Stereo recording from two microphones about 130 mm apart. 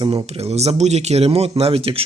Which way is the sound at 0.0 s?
45° right (ahead or behind).